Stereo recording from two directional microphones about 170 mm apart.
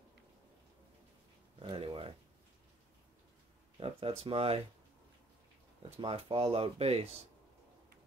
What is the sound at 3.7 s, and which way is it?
Speech, 35° right (ahead or behind).